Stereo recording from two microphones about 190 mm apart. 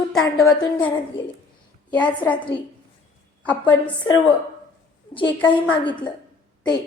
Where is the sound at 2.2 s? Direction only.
10° left (ahead or behind).